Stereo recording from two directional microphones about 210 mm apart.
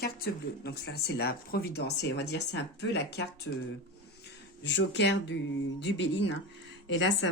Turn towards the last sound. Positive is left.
turn(degrees=60)  # may be behind; listen again after turning